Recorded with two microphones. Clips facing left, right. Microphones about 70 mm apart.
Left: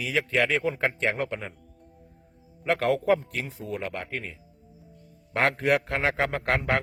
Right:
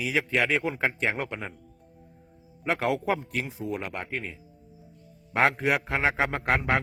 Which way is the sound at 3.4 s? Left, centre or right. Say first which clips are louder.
Even; centre.